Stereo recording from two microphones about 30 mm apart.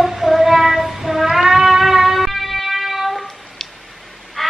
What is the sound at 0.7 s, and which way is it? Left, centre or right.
Music, centre.